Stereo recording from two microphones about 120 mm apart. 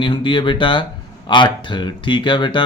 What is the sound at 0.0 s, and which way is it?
Speech, 45° left (ahead or behind).